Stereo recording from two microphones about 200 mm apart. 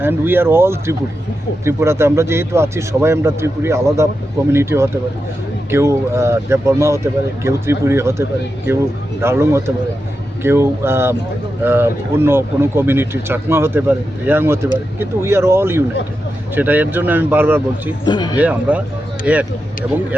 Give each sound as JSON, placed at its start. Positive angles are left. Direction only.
{"t": 0.0, "sound": "speech", "side_deg": -10}
{"t": 18.0, "sound": "speech", "side_deg": 20}
{"t": 18.3, "sound": "speech", "side_deg": -5}